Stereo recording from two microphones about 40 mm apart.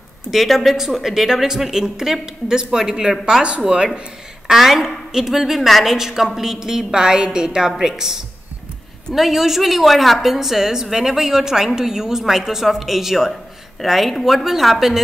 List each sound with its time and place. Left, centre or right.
0.3 s a woman's voice: centre
3.6 s a woman's voice: right
4.5 s a woman's voice: centre